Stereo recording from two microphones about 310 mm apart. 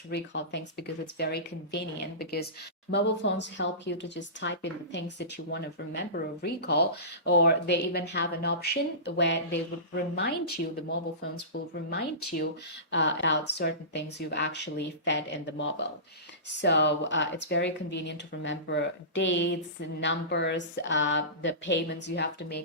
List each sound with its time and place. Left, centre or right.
0.1 s speech: left